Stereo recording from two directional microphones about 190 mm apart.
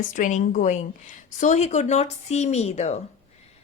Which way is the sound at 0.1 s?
40° left (ahead or behind).